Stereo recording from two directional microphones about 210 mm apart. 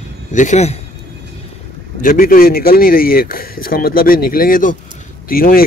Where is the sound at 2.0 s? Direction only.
45° left (ahead or behind).